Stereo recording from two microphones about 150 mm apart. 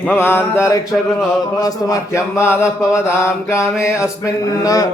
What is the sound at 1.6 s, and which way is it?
Mantra, 25° left (ahead or behind).